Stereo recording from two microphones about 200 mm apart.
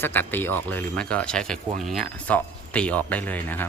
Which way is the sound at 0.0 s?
10° left (ahead or behind).